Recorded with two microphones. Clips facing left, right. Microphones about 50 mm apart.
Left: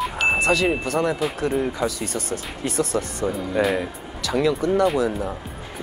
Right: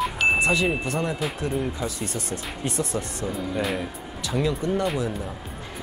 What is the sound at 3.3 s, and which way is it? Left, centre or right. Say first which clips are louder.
Speech: left 5 dB; centre.